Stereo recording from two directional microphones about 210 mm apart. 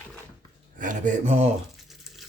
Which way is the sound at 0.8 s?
40° right (ahead or behind).